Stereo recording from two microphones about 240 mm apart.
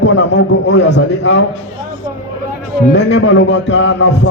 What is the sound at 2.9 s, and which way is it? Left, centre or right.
A man's voice, left.